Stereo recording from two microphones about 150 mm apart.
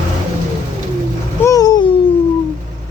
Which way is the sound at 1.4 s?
25° left (ahead or behind).